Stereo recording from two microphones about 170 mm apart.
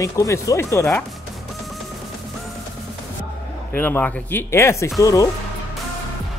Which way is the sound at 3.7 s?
10° left (ahead or behind).